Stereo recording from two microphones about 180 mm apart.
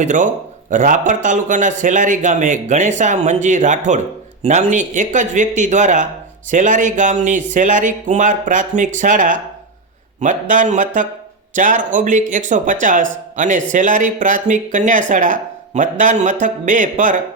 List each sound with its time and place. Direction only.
0.0 s speech: 45° right (ahead or behind)